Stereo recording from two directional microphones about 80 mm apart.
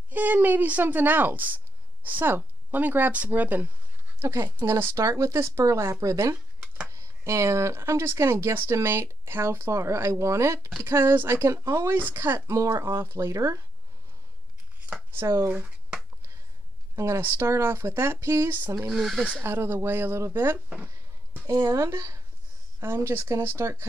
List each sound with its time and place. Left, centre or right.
0.1 s speech: right
4.2 s speech: right
11.9 s speech: right
12.7 s speech: right
15.1 s speech: right
16.9 s speech: right
18.9 s speech: centre
19.4 s speech: right
20.5 s speech: centre
21.5 s speech: right